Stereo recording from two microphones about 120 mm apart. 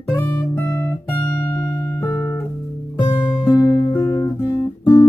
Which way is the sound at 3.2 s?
15° left (ahead or behind).